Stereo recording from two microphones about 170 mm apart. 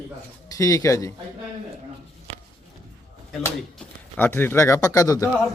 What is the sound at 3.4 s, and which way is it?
Speech, 10° left (ahead or behind).